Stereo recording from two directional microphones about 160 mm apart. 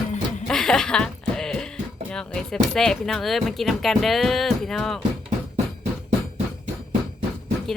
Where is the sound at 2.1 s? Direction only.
5° left (ahead or behind).